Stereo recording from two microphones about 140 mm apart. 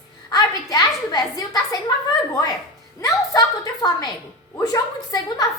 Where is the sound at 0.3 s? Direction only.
30° left (ahead or behind).